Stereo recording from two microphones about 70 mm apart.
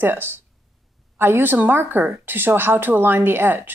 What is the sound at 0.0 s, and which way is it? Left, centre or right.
Speech, right.